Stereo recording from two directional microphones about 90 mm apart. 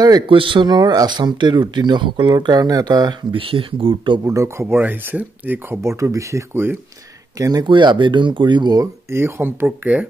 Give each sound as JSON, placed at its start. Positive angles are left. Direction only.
{"t": 0.3, "sound": "speech", "side_deg": -70}
{"t": 2.3, "sound": "speech", "side_deg": -45}
{"t": 4.2, "sound": "speech", "side_deg": -35}
{"t": 5.8, "sound": "speech", "side_deg": -35}
{"t": 7.3, "sound": "speech", "side_deg": -40}
{"t": 7.6, "sound": "speech", "side_deg": -60}
{"t": 9.1, "sound": "speech", "side_deg": -25}
{"t": 9.7, "sound": "speech", "side_deg": -15}